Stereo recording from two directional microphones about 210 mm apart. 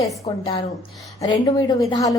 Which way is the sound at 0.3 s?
25° left (ahead or behind).